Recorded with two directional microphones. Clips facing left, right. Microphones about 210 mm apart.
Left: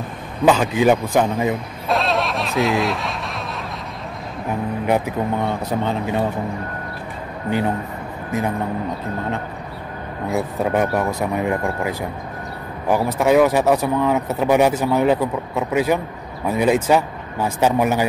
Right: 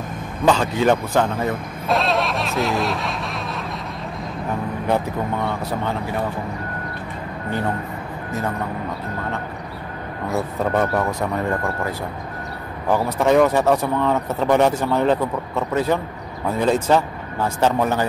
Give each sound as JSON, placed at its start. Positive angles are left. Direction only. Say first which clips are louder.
{"t": 0.5, "sound": "speech", "louder": "left 2 dB", "side_deg": 10}
{"t": 1.9, "sound": "snicker", "louder": "even", "side_deg": 0}
{"t": 4.8, "sound": "a man's voice", "louder": "left 2 dB", "side_deg": 15}
{"t": 8.3, "sound": "a man's voice", "louder": "left 3 dB", "side_deg": 15}
{"t": 10.3, "sound": "speech", "louder": "left 1 dB", "side_deg": 10}